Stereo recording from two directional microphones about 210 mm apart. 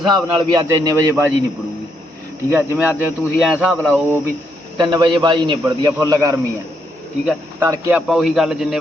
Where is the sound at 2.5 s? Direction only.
10° right (ahead or behind).